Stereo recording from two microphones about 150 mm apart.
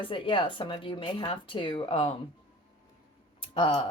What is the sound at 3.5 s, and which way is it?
Speech, 35° left (ahead or behind).